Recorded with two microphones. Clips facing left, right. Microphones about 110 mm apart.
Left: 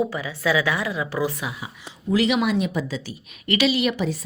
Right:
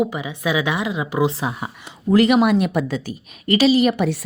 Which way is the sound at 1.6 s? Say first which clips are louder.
Right 6 dB; 55° right (ahead or behind).